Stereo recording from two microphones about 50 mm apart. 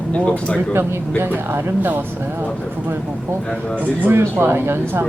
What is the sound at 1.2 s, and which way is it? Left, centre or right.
Speech, right.